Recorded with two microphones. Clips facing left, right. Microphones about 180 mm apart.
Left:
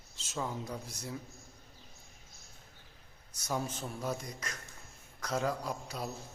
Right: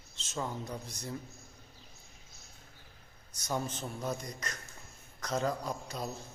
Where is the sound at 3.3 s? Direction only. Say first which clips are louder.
Right 1 dB; 5° left (ahead or behind).